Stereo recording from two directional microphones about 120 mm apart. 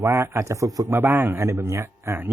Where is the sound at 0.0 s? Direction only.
25° right (ahead or behind).